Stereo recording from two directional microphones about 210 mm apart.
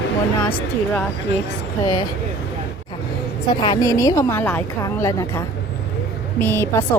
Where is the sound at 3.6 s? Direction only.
15° left (ahead or behind).